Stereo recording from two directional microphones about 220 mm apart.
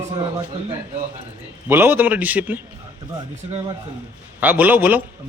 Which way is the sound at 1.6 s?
10° right (ahead or behind).